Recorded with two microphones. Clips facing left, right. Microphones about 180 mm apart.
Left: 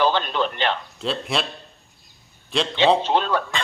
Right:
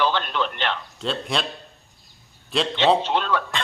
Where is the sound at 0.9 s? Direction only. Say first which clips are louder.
Left 1 dB; centre (ahead or behind).